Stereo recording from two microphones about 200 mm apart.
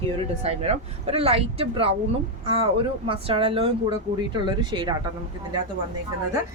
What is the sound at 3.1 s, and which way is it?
Speech, 25° right (ahead or behind).